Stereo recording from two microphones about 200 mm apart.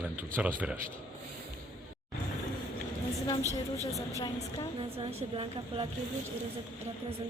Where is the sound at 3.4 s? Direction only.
15° right (ahead or behind).